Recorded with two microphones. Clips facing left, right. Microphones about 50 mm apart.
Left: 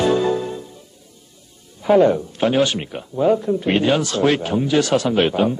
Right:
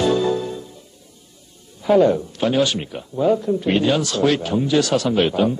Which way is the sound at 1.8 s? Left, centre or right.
Left.